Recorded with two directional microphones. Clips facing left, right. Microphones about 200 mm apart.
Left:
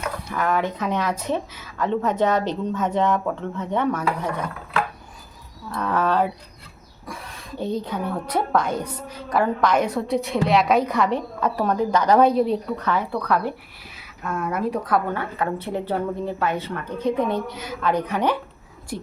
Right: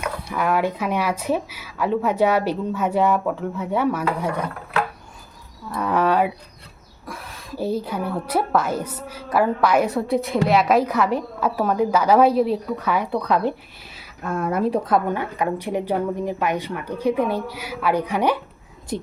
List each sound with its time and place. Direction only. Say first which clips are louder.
0.0 s speech: right 1 dB; 10° right (ahead or behind)
5.7 s a woman's voice: right 2 dB; 10° right (ahead or behind)
14.3 s speech: right 3 dB; 30° right (ahead or behind); by 18.3 s 10° right (ahead or behind)
18.9 s speech: right 4 dB; 25° right (ahead or behind)